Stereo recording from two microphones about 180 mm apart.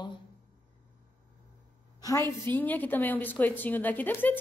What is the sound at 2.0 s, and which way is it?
A woman's voice, 15° left (ahead or behind).